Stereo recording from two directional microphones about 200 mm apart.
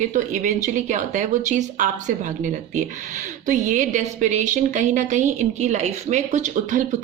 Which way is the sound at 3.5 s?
40° right (ahead or behind).